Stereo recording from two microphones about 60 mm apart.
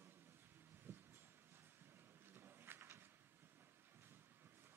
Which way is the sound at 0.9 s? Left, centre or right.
Right.